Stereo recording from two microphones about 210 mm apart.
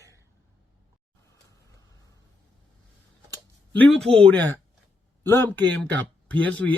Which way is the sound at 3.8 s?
5° left (ahead or behind).